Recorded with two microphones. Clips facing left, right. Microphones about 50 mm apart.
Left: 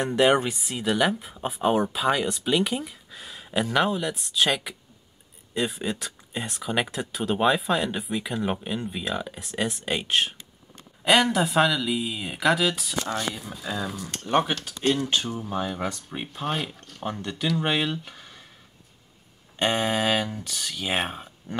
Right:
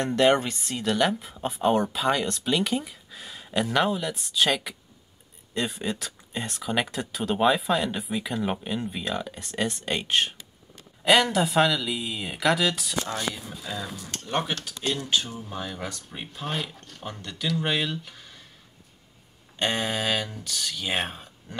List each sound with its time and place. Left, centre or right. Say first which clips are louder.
0.0 s speech: left 1 dB; centre
13.1 s speech: left 1 dB; centre
19.6 s speech: left 3 dB; centre